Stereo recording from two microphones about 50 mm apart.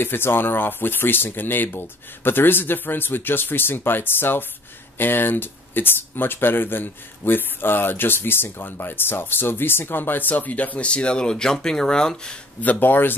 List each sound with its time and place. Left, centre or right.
0.0 s speech: left; by 12.4 s centre
12.6 s speech: left